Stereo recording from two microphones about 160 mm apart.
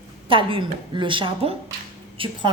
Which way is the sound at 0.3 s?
35° right (ahead or behind).